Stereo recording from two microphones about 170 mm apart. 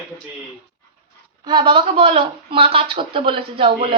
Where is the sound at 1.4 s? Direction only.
25° right (ahead or behind).